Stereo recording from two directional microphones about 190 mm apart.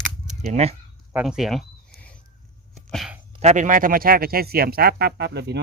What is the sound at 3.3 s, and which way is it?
Speech, 35° right (ahead or behind).